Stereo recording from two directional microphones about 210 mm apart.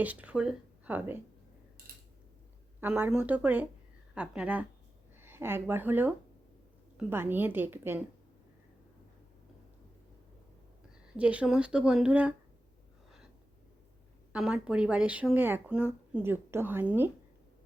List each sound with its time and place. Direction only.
0.0 s speech: 5° right (ahead or behind)
1.9 s a sound: 45° right (ahead or behind)
2.8 s a woman's voice: 5° right (ahead or behind)
11.2 s speech: 5° right (ahead or behind)
14.3 s speech: 5° right (ahead or behind)